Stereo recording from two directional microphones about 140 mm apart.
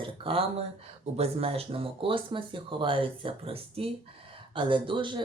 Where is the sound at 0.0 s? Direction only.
40° right (ahead or behind).